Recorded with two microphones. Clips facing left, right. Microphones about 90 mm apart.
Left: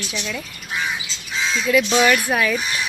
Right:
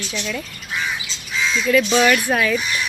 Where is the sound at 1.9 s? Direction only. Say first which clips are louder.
Right 1 dB; 5° left (ahead or behind).